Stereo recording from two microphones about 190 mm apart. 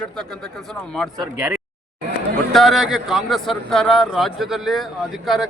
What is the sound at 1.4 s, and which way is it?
Speech, 10° right (ahead or behind).